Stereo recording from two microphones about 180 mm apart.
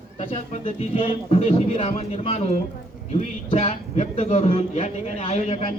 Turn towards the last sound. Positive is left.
turn(degrees=35)  # may be behind; listen again after turning